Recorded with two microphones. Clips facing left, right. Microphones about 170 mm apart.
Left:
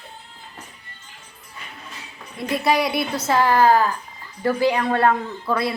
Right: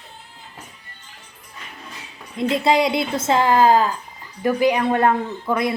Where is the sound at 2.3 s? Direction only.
20° right (ahead or behind).